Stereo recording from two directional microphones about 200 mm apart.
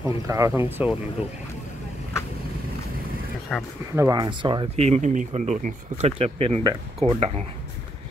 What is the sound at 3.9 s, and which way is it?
Speech, 15° right (ahead or behind).